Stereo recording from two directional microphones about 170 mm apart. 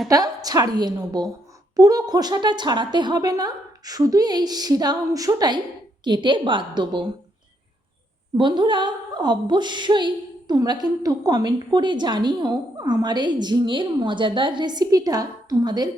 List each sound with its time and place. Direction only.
0.1 s a woman's voice: 20° right (ahead or behind)
8.4 s a woman's voice: 30° right (ahead or behind)